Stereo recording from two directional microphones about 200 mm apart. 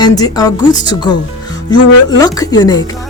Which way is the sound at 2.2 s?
20° left (ahead or behind).